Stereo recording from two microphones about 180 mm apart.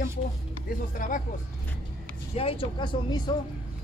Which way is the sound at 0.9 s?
45° left (ahead or behind).